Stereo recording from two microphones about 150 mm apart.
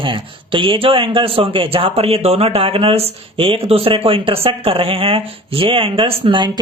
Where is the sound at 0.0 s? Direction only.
35° right (ahead or behind).